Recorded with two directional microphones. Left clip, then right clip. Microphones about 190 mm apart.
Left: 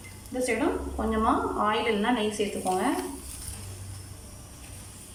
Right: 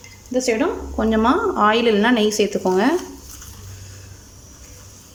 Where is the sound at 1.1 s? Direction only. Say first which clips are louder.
Right 8 dB; 60° right (ahead or behind).